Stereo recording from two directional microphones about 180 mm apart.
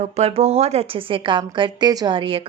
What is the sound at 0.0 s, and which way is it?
A woman's voice, 35° right (ahead or behind).